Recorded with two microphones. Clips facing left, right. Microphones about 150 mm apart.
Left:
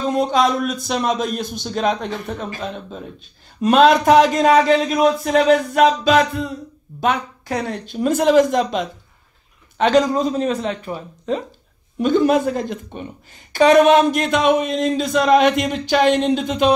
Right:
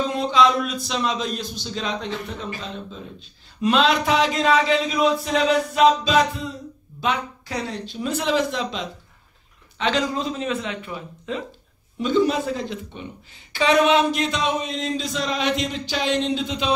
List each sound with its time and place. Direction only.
0.1 s a man's voice: 50° left (ahead or behind)
12.0 s speech: 55° left (ahead or behind)